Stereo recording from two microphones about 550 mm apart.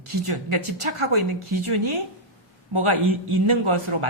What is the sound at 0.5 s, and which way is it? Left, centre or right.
A man's voice, right.